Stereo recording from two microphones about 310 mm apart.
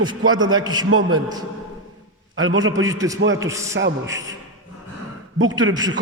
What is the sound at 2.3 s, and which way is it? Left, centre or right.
Speech, right.